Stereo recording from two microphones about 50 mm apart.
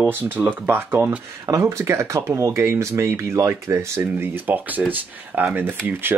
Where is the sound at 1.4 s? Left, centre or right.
Right.